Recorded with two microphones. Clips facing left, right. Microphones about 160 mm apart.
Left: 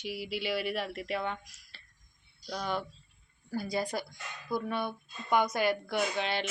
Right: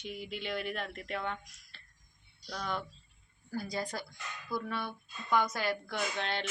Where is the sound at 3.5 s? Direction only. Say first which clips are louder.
Left 4 dB; 10° left (ahead or behind).